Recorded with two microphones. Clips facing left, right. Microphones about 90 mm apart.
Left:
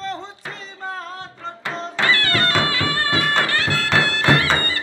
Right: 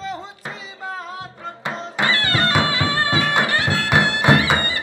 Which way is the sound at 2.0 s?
20° right (ahead or behind).